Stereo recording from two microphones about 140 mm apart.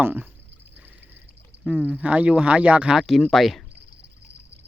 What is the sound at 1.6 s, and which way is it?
Speech, 10° right (ahead or behind).